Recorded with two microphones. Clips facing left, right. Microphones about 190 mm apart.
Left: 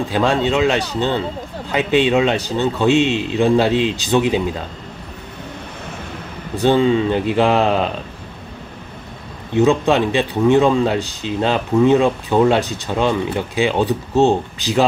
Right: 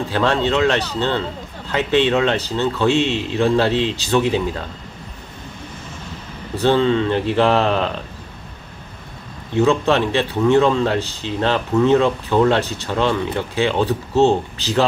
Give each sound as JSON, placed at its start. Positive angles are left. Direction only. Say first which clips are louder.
{"t": 0.1, "sound": "speech", "louder": "left 1 dB", "side_deg": 15}
{"t": 6.6, "sound": "speech", "louder": "left 2 dB", "side_deg": 15}
{"t": 9.6, "sound": "speech", "louder": "left 2 dB", "side_deg": 15}